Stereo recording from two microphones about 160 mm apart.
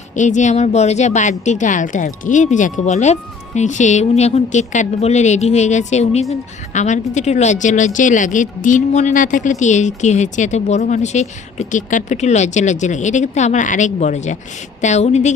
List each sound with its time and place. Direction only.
0.2 s speech: 50° left (ahead or behind)